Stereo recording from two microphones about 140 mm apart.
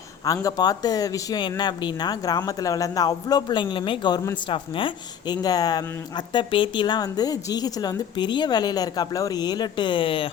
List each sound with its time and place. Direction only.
0.4 s a woman's voice: 25° left (ahead or behind)